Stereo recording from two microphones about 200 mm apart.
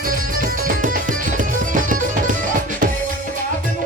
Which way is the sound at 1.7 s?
40° right (ahead or behind).